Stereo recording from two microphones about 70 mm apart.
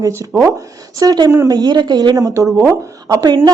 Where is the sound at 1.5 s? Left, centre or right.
Right.